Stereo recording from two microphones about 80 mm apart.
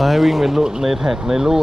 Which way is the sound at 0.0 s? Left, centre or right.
Centre.